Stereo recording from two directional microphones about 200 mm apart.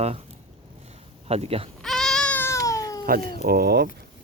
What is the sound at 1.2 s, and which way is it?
Speech, 30° right (ahead or behind).